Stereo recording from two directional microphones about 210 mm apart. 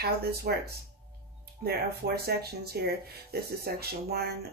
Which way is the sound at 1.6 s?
50° right (ahead or behind).